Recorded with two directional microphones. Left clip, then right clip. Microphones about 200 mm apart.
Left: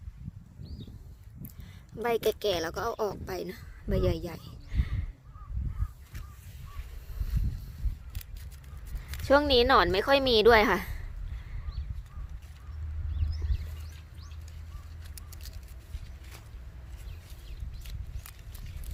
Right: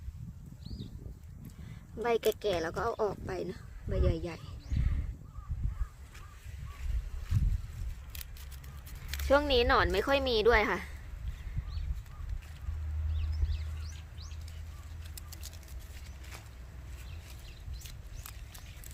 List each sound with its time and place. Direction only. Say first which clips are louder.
2.0 s speech: left 2 dB; 55° left (ahead or behind)
9.2 s a woman's voice: left 4 dB; 40° left (ahead or behind)